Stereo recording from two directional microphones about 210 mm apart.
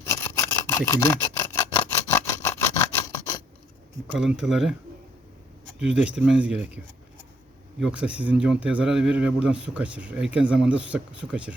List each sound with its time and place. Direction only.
0.1 s filing: 10° left (ahead or behind)
2.1 s scrape: 10° left (ahead or behind)
4.1 s speech: 5° right (ahead or behind)
5.8 s speech: 5° right (ahead or behind)
7.8 s speech: 5° right (ahead or behind)